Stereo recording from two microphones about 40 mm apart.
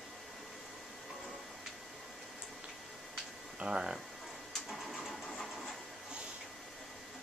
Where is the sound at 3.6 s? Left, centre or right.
Centre.